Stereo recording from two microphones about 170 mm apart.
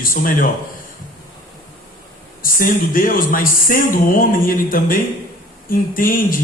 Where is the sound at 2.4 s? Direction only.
55° left (ahead or behind).